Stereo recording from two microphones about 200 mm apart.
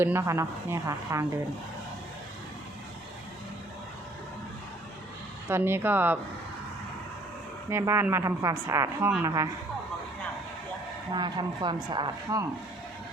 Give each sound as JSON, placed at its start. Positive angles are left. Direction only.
{"t": 0.0, "sound": "a woman's voice", "side_deg": -15}
{"t": 5.5, "sound": "a woman's voice", "side_deg": -10}
{"t": 7.7, "sound": "a woman's voice", "side_deg": -15}
{"t": 11.1, "sound": "speech", "side_deg": -20}